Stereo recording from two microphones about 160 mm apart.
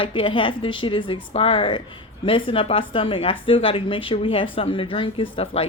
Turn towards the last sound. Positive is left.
turn(degrees=35)  # may be behind; listen again after turning